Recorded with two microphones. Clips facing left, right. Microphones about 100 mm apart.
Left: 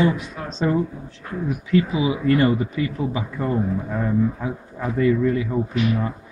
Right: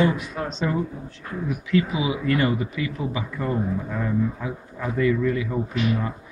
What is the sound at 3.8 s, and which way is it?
A man's voice, 25° left (ahead or behind).